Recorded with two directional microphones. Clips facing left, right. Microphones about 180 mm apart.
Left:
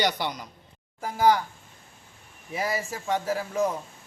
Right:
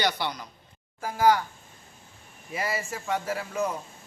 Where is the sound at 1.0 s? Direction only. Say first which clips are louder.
Even; centre (ahead or behind).